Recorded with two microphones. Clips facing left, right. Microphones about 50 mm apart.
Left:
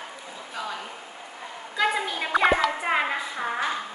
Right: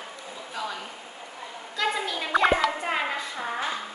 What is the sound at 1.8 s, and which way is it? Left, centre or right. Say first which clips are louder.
Speech: left 3 dB; centre.